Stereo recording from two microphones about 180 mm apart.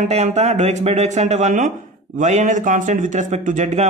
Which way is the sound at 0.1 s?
35° right (ahead or behind).